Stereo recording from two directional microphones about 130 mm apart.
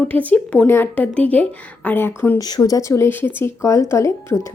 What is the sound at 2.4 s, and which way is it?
Speech, 30° left (ahead or behind).